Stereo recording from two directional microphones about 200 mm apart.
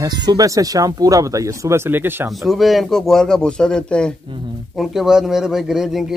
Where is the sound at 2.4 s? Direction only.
Centre (ahead or behind).